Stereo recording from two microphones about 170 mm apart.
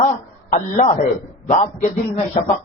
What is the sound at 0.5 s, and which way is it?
A man's voice, 45° left (ahead or behind).